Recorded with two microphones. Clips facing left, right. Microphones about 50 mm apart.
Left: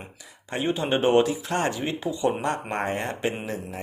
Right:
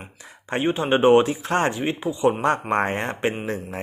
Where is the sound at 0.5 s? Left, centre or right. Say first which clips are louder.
Right 4 dB; right.